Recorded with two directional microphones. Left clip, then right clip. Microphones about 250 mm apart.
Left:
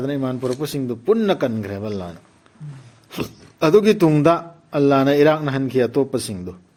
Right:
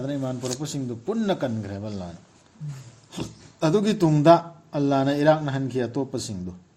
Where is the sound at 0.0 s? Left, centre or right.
Left.